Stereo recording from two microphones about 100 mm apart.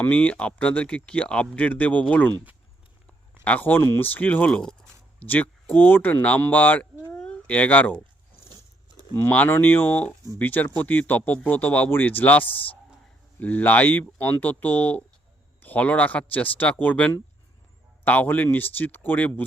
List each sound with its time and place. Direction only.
0.0 s speech: 15° left (ahead or behind)
3.4 s speech: 15° left (ahead or behind)